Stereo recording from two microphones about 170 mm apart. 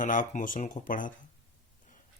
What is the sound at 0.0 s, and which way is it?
Speech, 50° left (ahead or behind).